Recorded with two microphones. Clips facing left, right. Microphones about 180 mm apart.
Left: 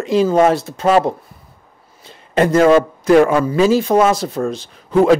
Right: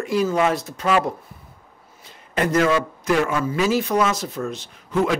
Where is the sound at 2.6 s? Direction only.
50° left (ahead or behind).